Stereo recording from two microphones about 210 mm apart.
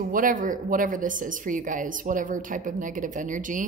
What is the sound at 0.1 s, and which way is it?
Speech, 40° right (ahead or behind).